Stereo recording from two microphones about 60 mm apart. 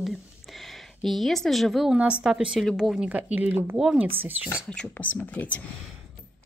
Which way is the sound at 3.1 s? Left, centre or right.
Right.